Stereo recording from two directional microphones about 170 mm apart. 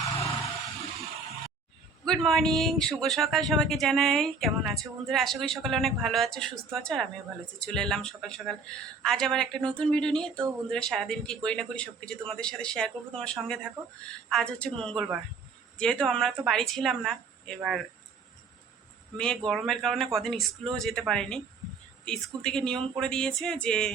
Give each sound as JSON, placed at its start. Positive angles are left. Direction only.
{"t": 0.0, "sound": "a sound", "side_deg": 20}
{"t": 2.0, "sound": "a man's voice", "side_deg": 0}
{"t": 19.1, "sound": "a man's voice", "side_deg": 5}